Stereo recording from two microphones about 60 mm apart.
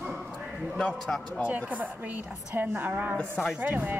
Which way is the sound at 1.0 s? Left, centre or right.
Centre.